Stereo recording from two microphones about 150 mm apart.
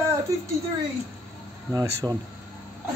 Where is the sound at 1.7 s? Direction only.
25° right (ahead or behind).